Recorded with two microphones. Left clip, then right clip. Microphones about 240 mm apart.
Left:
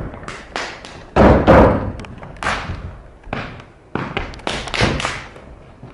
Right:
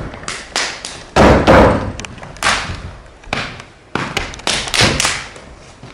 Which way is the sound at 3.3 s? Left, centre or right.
Centre.